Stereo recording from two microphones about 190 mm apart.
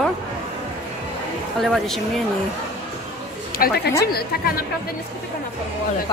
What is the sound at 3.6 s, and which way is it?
Speech, 50° left (ahead or behind).